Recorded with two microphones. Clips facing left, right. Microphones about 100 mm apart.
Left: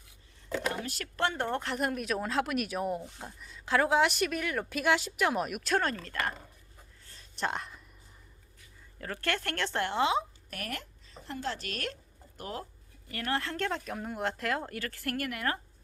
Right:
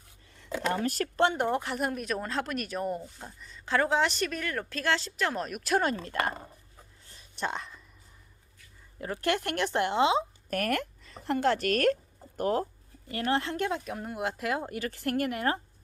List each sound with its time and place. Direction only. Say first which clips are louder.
0.7 s speech: right 8 dB; 50° right (ahead or behind)
1.1 s speech: right 4 dB; 20° right (ahead or behind); by 5.7 s 5° left (ahead or behind)
5.7 s speech: right 3 dB; 15° right (ahead or behind)
7.0 s whispering: even; 15° right (ahead or behind)
7.3 s speech: even; centre (ahead or behind)
9.0 s speech: right 4 dB; 15° right (ahead or behind)
10.5 s speech: right 11 dB; 55° right (ahead or behind)
13.1 s speech: right 4 dB; 25° right (ahead or behind)